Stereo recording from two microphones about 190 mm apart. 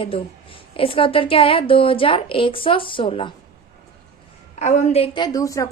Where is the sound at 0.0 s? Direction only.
30° left (ahead or behind).